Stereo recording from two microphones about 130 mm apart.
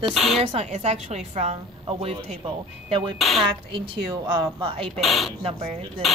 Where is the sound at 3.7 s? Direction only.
35° right (ahead or behind).